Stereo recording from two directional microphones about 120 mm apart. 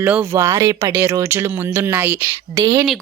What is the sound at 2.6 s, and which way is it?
Speech, 25° right (ahead or behind).